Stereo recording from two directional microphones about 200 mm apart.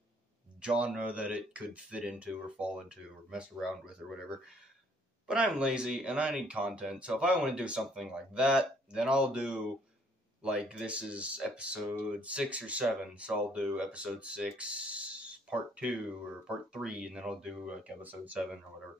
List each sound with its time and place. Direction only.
0.6 s speech: 5° right (ahead or behind)
5.3 s speech: 5° right (ahead or behind)